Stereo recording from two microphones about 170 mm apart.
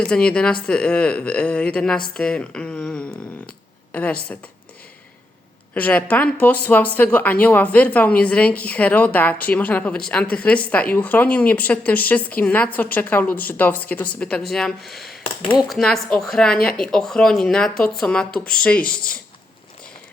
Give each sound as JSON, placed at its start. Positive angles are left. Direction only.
{"t": 0.0, "sound": "speech", "side_deg": 5}
{"t": 5.7, "sound": "speech", "side_deg": 10}